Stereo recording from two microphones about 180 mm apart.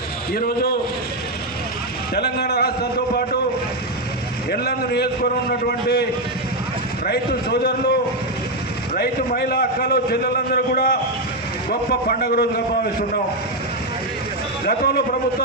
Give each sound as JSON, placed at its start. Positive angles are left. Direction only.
{"t": 0.3, "sound": "a man's voice", "side_deg": 60}
{"t": 2.1, "sound": "a man's voice", "side_deg": 65}
{"t": 4.5, "sound": "a man's voice", "side_deg": 60}
{"t": 9.0, "sound": "a man's voice", "side_deg": 60}
{"t": 14.6, "sound": "a man's voice", "side_deg": 60}